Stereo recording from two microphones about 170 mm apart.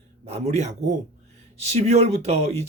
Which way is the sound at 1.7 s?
40° right (ahead or behind).